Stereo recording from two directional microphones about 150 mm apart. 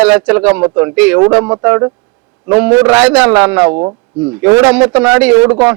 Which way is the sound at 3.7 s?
30° right (ahead or behind).